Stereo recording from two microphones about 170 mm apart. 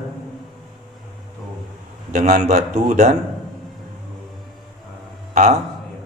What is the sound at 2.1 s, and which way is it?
Speech, 45° right (ahead or behind).